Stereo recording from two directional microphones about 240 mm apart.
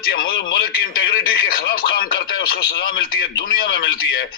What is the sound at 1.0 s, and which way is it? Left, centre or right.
A man's voice, left.